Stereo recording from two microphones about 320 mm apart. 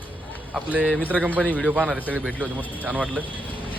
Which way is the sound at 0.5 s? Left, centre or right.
Centre.